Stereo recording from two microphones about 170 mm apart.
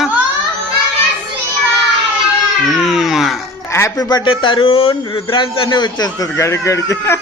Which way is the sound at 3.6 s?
15° left (ahead or behind).